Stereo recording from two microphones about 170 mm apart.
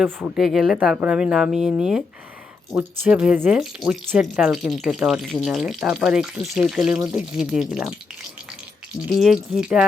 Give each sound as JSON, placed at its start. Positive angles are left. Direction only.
{"t": 0.3, "sound": "speech", "side_deg": 0}
{"t": 6.9, "sound": "speech", "side_deg": -15}
{"t": 7.2, "sound": "speech", "side_deg": -5}
{"t": 9.1, "sound": "speech", "side_deg": 0}